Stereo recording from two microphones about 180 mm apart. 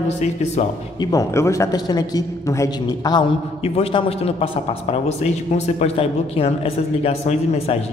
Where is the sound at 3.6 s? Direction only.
30° left (ahead or behind).